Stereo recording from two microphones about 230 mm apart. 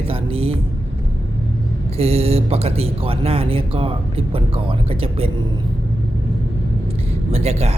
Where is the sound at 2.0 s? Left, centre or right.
Right.